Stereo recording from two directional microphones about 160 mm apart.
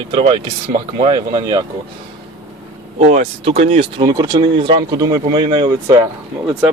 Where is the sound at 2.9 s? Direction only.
45° right (ahead or behind); by 6.0 s 30° right (ahead or behind).